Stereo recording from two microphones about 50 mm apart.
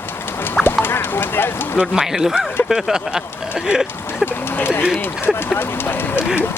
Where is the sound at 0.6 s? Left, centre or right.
Left.